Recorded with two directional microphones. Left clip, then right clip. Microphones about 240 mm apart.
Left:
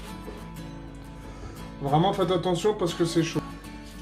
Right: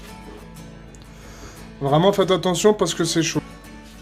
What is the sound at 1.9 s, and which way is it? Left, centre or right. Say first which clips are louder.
Speech: right 6 dB; right.